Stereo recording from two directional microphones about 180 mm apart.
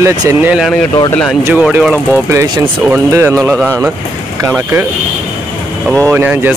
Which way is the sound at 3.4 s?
5° left (ahead or behind).